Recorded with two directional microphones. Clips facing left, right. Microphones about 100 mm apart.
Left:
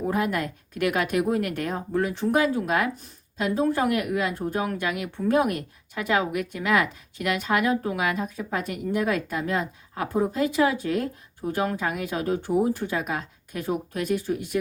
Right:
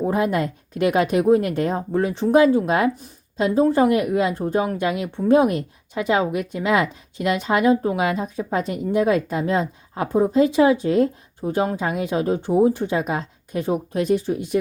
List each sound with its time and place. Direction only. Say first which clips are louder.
0.0 s speech: right 5 dB; 30° right (ahead or behind)